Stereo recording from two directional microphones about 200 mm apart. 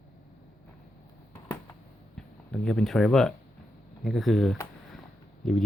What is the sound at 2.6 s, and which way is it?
Speech, 5° left (ahead or behind).